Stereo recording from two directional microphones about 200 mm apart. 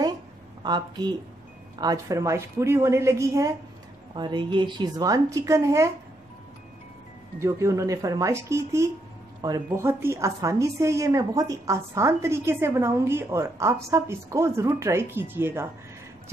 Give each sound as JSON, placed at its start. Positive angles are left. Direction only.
{"t": 0.7, "sound": "a woman's voice", "side_deg": -20}
{"t": 7.3, "sound": "a woman's voice", "side_deg": -15}